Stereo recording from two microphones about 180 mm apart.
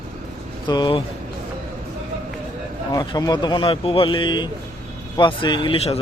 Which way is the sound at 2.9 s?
20° left (ahead or behind).